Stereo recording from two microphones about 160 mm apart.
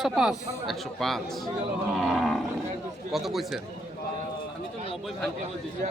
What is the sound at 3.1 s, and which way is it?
Speech, centre (ahead or behind).